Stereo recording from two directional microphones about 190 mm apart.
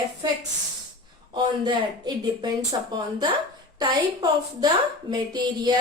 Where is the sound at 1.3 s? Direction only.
25° right (ahead or behind).